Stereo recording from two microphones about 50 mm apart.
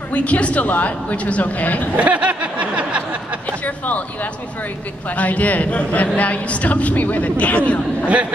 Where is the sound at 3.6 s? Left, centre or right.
Left.